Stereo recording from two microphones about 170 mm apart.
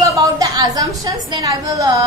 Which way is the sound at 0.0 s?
20° right (ahead or behind).